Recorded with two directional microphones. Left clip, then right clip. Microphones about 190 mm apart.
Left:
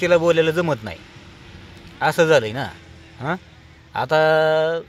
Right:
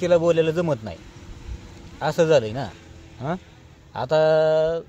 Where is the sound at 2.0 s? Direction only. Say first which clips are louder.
Left 3 dB; 20° left (ahead or behind).